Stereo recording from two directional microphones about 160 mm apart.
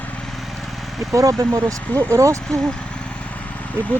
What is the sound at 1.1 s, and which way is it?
Speech, 20° right (ahead or behind).